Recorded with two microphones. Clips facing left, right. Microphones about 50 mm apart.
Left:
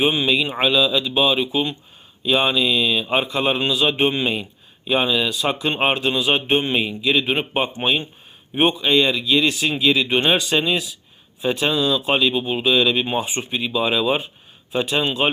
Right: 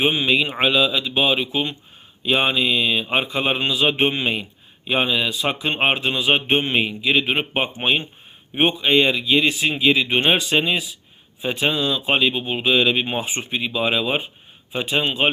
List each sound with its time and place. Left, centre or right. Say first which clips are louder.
0.0 s a man's voice: even; right
5.6 s a man's voice: even; right
13.2 s a man's voice: even; right; by 15.3 s centre